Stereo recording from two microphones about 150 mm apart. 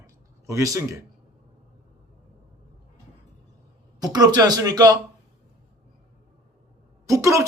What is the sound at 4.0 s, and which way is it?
Speech, 25° right (ahead or behind).